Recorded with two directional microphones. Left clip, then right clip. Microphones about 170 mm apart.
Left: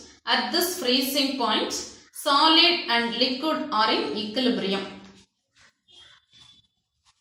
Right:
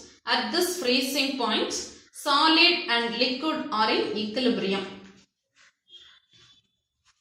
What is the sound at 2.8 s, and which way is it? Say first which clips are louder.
A woman's voice: left 1 dB; 25° right (ahead or behind).